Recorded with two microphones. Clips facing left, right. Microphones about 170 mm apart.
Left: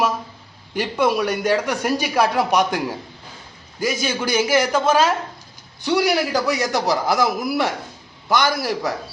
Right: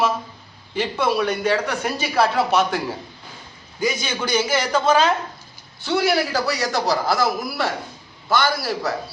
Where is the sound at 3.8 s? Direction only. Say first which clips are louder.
Left 2 dB; 10° left (ahead or behind).